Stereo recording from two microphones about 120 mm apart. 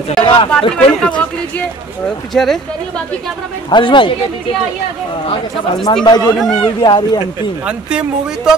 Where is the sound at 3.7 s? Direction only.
40° left (ahead or behind).